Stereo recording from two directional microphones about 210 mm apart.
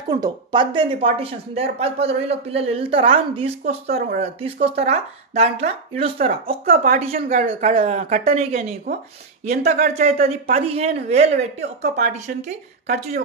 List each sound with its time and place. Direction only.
0.1 s speech: 20° right (ahead or behind)
6.1 s speech: 45° right (ahead or behind)
10.5 s speech: 30° right (ahead or behind)